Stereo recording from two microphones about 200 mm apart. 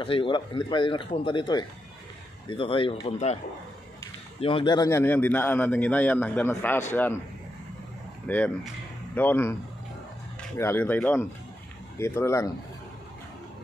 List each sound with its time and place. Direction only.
0.0 s speech: 25° left (ahead or behind)
4.4 s a man's voice: 25° left (ahead or behind); by 7.2 s 10° left (ahead or behind)
8.3 s a man's voice: 10° left (ahead or behind)
10.6 s a man's voice: 10° left (ahead or behind)